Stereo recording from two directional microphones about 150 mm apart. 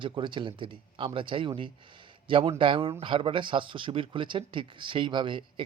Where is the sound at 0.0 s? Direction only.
35° right (ahead or behind).